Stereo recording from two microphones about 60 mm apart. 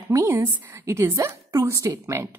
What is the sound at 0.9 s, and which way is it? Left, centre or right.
A woman's voice, right.